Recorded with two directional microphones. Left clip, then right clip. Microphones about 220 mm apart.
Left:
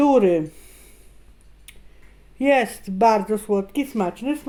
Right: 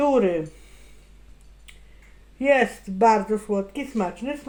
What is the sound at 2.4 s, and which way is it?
Speech, 50° left (ahead or behind).